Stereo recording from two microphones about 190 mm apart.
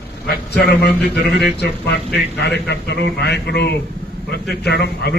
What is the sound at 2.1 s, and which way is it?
A man's voice, 60° left (ahead or behind).